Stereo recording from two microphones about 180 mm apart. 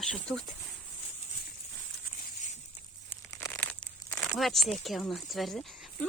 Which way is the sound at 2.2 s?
40° left (ahead or behind).